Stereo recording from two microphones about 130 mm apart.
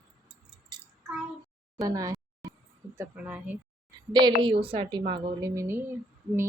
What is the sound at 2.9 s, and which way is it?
Speech, 15° right (ahead or behind).